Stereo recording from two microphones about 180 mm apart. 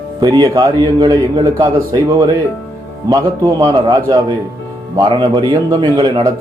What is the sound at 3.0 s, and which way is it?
A man's voice, 20° right (ahead or behind).